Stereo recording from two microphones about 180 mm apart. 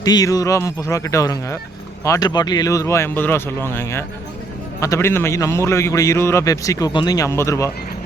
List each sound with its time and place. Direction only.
0.0 s a man's voice: 20° left (ahead or behind)